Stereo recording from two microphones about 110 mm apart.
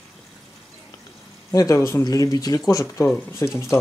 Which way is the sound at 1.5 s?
30° left (ahead or behind).